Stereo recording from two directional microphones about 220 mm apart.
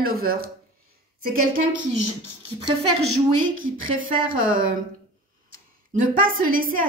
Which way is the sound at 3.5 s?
40° right (ahead or behind).